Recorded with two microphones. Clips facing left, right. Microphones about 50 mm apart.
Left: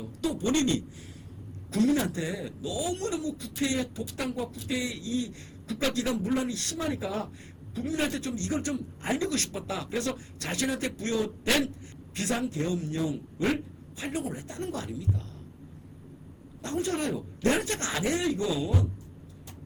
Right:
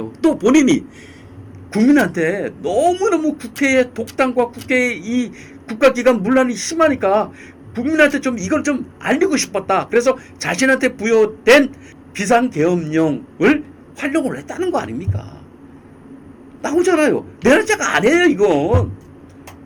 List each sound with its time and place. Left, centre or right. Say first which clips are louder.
0.0 s speech: right 15 dB; right
16.6 s speech: right 16 dB; right